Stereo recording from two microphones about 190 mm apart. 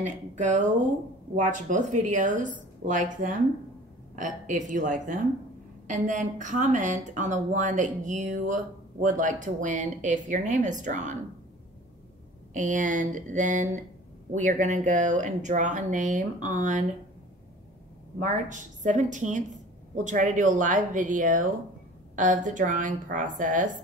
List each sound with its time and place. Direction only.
0.0 s a woman's voice: 40° right (ahead or behind)
12.5 s a woman's voice: 40° right (ahead or behind)
18.2 s a woman's voice: 40° right (ahead or behind)